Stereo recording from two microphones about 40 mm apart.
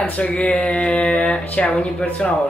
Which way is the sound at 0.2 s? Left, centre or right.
Left.